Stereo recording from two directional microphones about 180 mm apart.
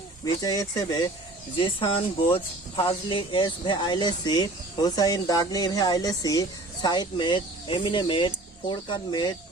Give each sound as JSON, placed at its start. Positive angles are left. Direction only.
{"t": 0.4, "sound": "speech", "side_deg": 20}